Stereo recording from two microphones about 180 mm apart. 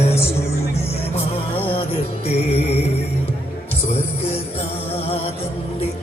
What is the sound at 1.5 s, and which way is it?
Music, 30° left (ahead or behind).